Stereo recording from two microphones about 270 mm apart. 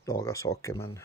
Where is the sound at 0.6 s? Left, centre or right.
Centre.